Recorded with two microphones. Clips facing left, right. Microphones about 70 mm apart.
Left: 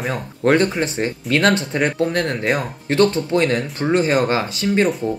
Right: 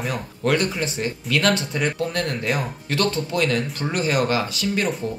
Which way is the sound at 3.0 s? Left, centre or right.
Left.